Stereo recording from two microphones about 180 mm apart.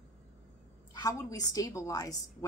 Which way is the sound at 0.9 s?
20° left (ahead or behind).